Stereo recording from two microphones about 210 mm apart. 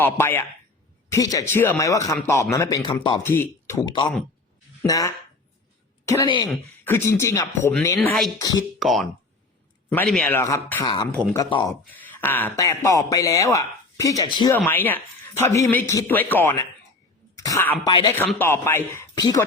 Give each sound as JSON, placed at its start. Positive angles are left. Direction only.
{"t": 0.0, "sound": "speech", "side_deg": 10}
{"t": 3.2, "sound": "speech", "side_deg": 10}
{"t": 8.4, "sound": "speech", "side_deg": 15}
{"t": 8.8, "sound": "speech", "side_deg": 0}
{"t": 11.7, "sound": "speech", "side_deg": 10}